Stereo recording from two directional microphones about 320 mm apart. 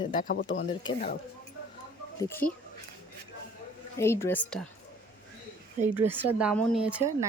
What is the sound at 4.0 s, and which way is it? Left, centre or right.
Speech, centre.